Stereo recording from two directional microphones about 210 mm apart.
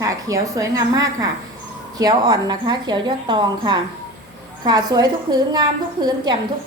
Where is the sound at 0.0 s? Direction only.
15° right (ahead or behind).